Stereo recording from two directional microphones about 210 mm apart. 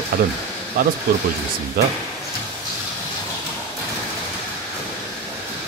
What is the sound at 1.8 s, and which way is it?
Speech, 45° right (ahead or behind).